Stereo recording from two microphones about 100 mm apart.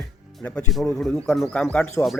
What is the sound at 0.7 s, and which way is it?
Speech, centre (ahead or behind).